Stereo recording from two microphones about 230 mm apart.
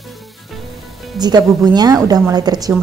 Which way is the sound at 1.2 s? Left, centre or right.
Centre.